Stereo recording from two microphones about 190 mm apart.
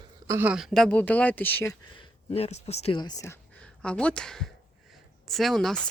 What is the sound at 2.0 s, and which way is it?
Speech, 30° left (ahead or behind).